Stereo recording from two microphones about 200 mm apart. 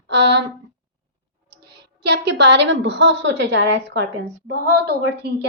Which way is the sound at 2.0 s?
60° right (ahead or behind).